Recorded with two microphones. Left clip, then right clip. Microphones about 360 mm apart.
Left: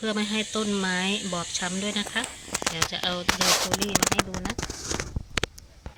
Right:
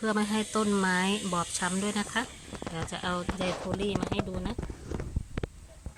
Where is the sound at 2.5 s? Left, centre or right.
Left.